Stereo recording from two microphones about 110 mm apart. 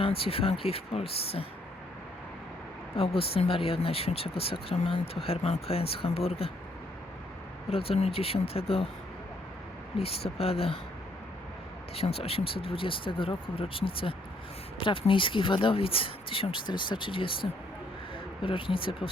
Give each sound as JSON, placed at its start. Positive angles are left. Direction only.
{"t": 0.0, "sound": "speech", "side_deg": 60}
{"t": 2.9, "sound": "speech", "side_deg": 60}
{"t": 7.7, "sound": "speech", "side_deg": 60}
{"t": 10.0, "sound": "speech", "side_deg": 65}
{"t": 11.9, "sound": "speech", "side_deg": 60}